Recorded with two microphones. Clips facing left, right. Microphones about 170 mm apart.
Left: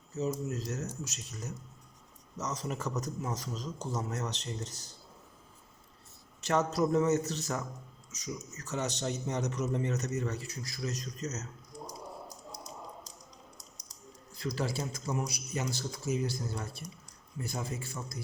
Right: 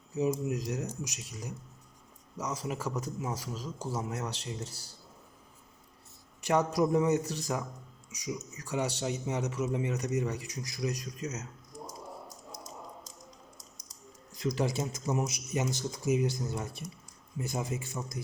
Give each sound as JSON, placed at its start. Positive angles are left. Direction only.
{"t": 0.1, "sound": "a man's voice", "side_deg": -15}
{"t": 6.4, "sound": "a man's voice", "side_deg": -15}
{"t": 14.3, "sound": "speech", "side_deg": -20}